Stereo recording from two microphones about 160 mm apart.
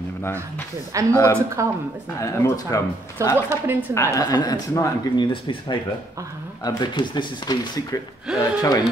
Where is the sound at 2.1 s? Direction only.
20° left (ahead or behind).